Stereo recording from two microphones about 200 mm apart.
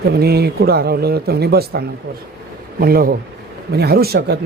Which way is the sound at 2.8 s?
50° right (ahead or behind).